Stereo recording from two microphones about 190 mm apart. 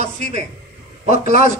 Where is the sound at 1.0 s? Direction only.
40° right (ahead or behind).